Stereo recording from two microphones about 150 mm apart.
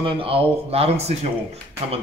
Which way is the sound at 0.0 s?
35° right (ahead or behind).